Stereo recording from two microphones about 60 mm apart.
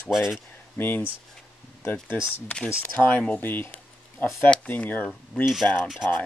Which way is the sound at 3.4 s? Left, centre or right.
Left.